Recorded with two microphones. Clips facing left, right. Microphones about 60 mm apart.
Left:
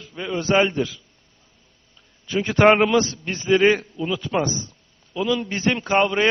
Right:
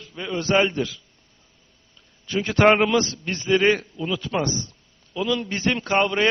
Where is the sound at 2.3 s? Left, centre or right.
Centre.